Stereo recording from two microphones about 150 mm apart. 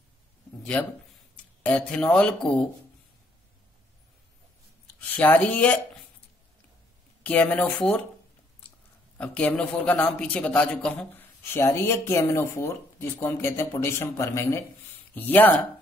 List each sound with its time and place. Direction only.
1.6 s a man's voice: 10° left (ahead or behind)
5.0 s a man's voice: 10° left (ahead or behind)
7.2 s a man's voice: 10° left (ahead or behind)
9.2 s a man's voice: 10° left (ahead or behind)